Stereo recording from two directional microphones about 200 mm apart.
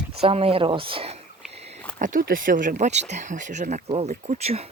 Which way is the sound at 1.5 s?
30° right (ahead or behind).